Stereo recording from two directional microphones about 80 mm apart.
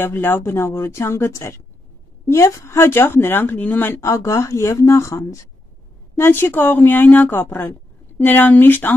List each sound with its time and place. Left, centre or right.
0.0 s a woman's voice: left
4.1 s a woman's voice: left
6.1 s speech: left